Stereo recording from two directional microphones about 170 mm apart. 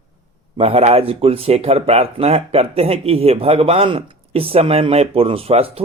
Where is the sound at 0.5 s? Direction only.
35° right (ahead or behind).